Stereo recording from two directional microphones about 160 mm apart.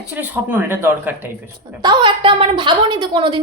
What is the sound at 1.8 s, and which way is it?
A woman's voice, 30° right (ahead or behind).